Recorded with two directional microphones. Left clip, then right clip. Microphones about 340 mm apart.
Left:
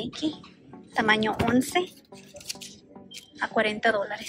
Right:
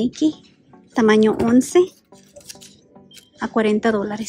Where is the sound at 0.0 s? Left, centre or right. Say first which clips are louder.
Right 11 dB; right.